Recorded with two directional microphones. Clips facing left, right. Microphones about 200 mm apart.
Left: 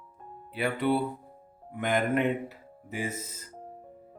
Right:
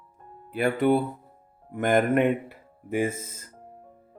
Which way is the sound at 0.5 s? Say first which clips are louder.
Right 5 dB; 45° right (ahead or behind).